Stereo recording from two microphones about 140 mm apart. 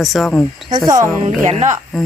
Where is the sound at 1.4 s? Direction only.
55° right (ahead or behind).